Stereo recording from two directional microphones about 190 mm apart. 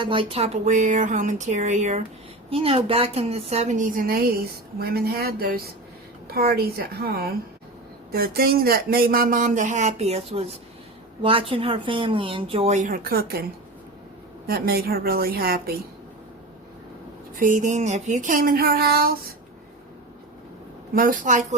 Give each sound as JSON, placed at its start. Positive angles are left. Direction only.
{"t": 0.0, "sound": "a woman's voice", "side_deg": -25}
{"t": 14.4, "sound": "speech", "side_deg": -55}
{"t": 17.4, "sound": "speech", "side_deg": -40}
{"t": 20.9, "sound": "speech", "side_deg": -45}